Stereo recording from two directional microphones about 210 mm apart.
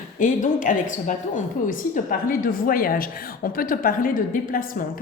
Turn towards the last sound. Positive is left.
turn(degrees=40)  # may be behind; listen again after turning